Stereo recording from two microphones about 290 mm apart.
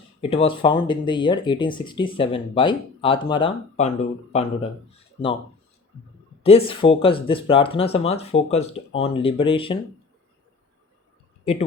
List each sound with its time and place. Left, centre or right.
0.2 s speech: centre
6.4 s speech: centre